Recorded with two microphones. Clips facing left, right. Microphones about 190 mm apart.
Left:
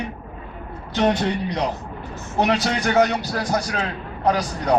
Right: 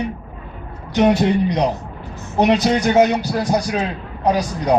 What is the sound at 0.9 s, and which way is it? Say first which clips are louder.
Speech: right 5 dB; 15° right (ahead or behind).